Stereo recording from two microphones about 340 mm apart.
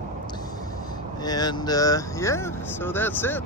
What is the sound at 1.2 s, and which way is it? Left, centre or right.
Speech, centre.